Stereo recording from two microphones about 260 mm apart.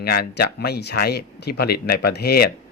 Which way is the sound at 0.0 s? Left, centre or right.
Left.